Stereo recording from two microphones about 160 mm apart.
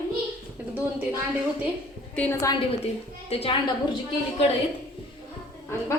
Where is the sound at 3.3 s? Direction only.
35° left (ahead or behind).